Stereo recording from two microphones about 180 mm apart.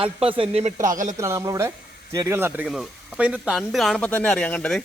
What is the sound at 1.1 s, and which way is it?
Speech, 15° right (ahead or behind).